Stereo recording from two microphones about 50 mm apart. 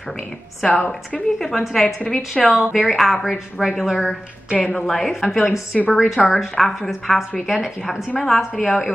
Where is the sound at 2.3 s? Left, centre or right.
Centre.